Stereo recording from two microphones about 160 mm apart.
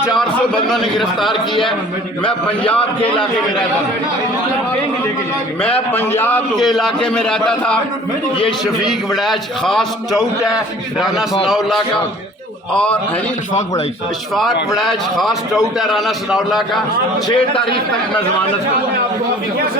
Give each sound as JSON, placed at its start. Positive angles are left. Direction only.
{"t": 0.1, "sound": "a man's voice", "side_deg": 0}
{"t": 5.6, "sound": "a man's voice", "side_deg": 10}
{"t": 6.6, "sound": "a man's voice", "side_deg": 0}
{"t": 13.5, "sound": "speech", "side_deg": 50}
{"t": 14.3, "sound": "a man's voice", "side_deg": 0}
{"t": 17.2, "sound": "a man's voice", "side_deg": 30}